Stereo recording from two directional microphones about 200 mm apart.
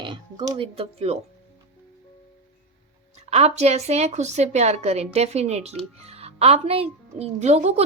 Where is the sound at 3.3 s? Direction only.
35° right (ahead or behind).